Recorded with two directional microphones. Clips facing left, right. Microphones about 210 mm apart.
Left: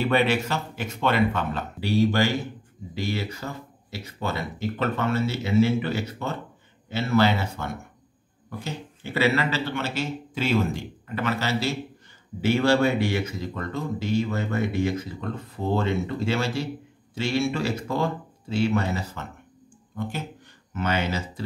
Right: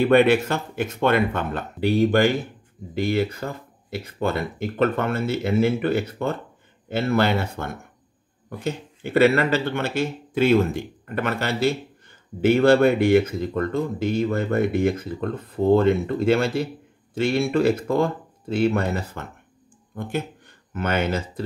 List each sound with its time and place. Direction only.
0.0 s speech: 55° right (ahead or behind)